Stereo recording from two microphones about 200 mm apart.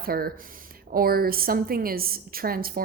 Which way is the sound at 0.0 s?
50° right (ahead or behind).